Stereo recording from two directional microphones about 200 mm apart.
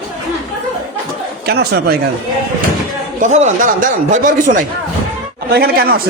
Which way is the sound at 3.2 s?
35° right (ahead or behind).